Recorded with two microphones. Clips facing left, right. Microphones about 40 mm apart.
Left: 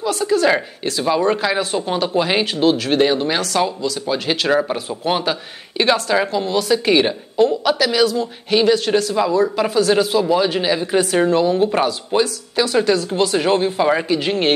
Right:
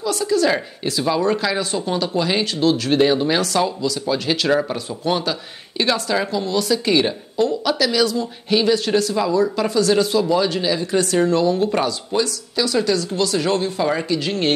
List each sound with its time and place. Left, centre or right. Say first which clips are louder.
0.2 s speech: left 2 dB; left
0.8 s a woman's voice: left 1 dB; centre
2.8 s a woman's voice: even; centre
12.1 s speech: left 3 dB; left